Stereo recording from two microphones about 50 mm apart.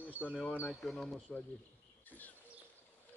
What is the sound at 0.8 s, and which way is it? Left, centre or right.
Speech, centre.